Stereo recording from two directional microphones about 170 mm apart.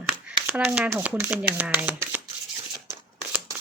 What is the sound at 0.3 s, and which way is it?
A woman's voice, 5° right (ahead or behind).